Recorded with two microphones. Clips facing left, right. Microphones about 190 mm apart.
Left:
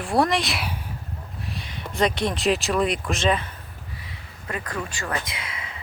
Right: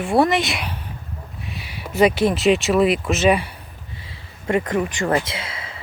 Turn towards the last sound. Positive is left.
turn(degrees=-30)  # may be behind; listen again after turning